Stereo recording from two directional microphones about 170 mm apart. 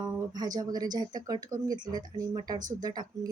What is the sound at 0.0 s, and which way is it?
Speech, 20° right (ahead or behind).